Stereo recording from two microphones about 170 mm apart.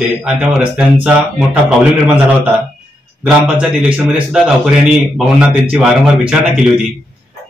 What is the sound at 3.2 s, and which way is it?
A man's voice, 5° right (ahead or behind).